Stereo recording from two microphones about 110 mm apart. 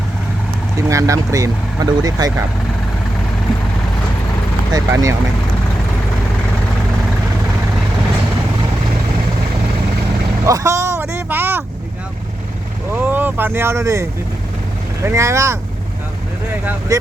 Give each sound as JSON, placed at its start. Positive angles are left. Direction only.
{"t": 0.8, "sound": "speech", "side_deg": -30}
{"t": 4.7, "sound": "speech", "side_deg": -30}
{"t": 10.4, "sound": "vehicle", "side_deg": -30}
{"t": 12.9, "sound": "speech", "side_deg": -15}
{"t": 16.9, "sound": "speech", "side_deg": -30}